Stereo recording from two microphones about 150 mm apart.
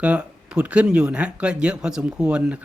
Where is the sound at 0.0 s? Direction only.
5° right (ahead or behind).